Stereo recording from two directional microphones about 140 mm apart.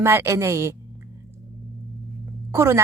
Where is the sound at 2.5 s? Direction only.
20° right (ahead or behind).